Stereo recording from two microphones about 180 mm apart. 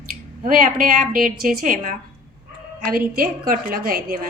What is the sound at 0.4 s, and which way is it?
A woman's voice, 50° right (ahead or behind).